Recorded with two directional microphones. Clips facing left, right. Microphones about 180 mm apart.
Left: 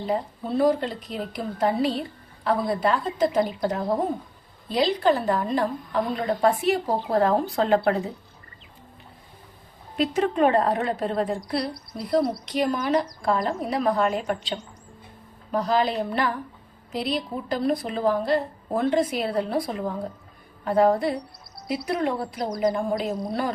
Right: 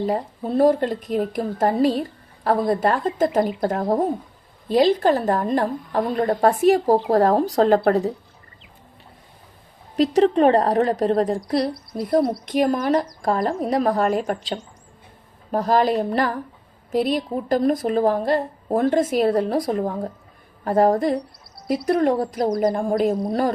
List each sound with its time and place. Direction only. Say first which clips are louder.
0.0 s a woman's voice: right 3 dB; 45° right (ahead or behind)
9.9 s a woman's voice: right 7 dB; 40° right (ahead or behind)